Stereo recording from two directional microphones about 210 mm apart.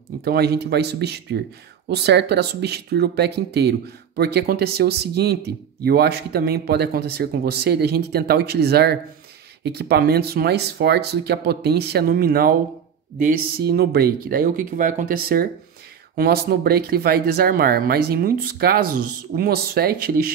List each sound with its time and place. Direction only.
0.2 s speech: 50° right (ahead or behind)
16.2 s speech: 45° right (ahead or behind)